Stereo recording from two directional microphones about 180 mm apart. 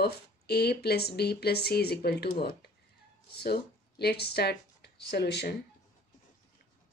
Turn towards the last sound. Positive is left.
turn(degrees=65)  # may be behind; listen again after turning